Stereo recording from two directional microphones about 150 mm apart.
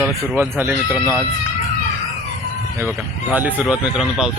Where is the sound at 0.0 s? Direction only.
15° right (ahead or behind).